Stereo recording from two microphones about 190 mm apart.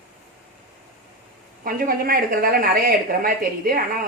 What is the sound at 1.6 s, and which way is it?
A woman's voice, 50° right (ahead or behind).